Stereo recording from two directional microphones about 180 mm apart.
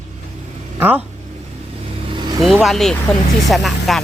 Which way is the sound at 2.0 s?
25° right (ahead or behind).